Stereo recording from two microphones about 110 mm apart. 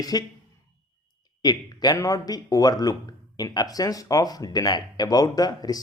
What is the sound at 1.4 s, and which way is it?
Speech, 40° left (ahead or behind).